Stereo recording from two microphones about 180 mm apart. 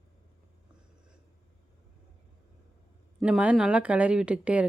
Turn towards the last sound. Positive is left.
turn(degrees=-5)  # may be behind; listen again after turning